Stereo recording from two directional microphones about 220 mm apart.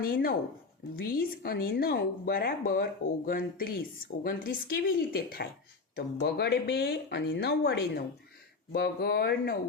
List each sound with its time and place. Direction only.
0.0 s a woman's voice: 40° left (ahead or behind)